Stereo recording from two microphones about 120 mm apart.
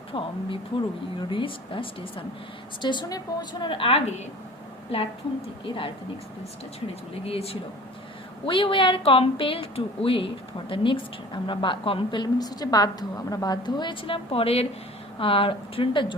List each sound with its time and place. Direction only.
0.1 s a woman's voice: 45° left (ahead or behind)
7.3 s a woman's voice: 55° left (ahead or behind)